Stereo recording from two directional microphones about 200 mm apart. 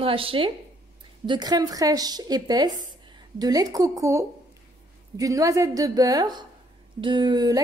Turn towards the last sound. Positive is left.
turn(degrees=-20)  # may be behind; listen again after turning